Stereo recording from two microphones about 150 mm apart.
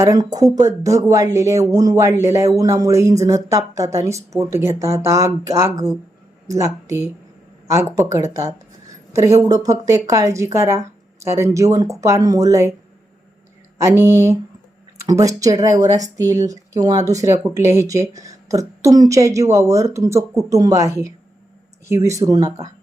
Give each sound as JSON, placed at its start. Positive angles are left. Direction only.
{"t": 0.0, "sound": "speech", "side_deg": -25}
{"t": 13.7, "sound": "speech", "side_deg": -20}